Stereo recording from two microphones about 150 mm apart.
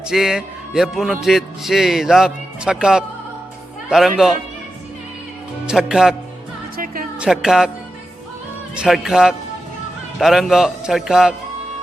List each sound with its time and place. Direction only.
0.1 s a man's voice: 5° right (ahead or behind)
5.6 s a man's voice: 5° right (ahead or behind)
6.7 s music: 70° right (ahead or behind)
7.2 s a man's voice: 5° right (ahead or behind)
8.7 s a man's voice: 5° right (ahead or behind)